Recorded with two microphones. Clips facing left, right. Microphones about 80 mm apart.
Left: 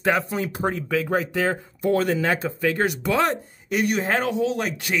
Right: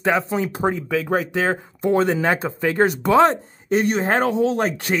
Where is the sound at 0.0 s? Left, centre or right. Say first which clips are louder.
Right 2 dB; right.